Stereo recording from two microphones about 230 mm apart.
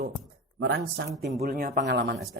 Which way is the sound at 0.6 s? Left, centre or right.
Right.